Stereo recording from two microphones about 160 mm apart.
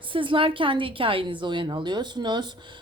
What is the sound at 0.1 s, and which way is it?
A woman's voice, 30° right (ahead or behind).